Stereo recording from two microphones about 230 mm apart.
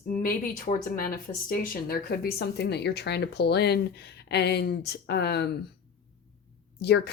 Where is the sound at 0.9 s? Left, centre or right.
Left.